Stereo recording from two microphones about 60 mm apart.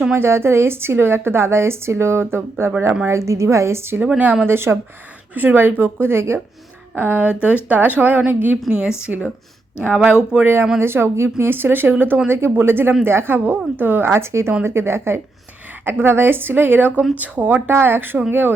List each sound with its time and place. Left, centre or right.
0.1 s a woman's voice: right
3.1 s a woman's voice: right
4.2 s speech: right
4.4 s a woman's voice: right
5.3 s speech: right
6.9 s speech: right
9.1 s speech: centre
10.4 s a woman's voice: right